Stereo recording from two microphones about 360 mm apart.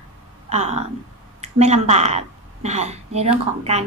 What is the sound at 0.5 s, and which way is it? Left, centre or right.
A woman's voice, centre.